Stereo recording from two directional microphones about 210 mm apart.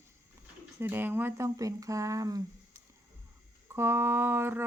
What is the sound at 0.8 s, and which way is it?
Speech, 10° right (ahead or behind).